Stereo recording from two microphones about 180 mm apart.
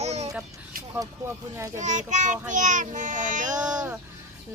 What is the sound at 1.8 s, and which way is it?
Child singing, 45° right (ahead or behind).